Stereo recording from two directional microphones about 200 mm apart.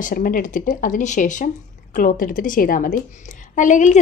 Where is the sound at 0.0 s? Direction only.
45° left (ahead or behind).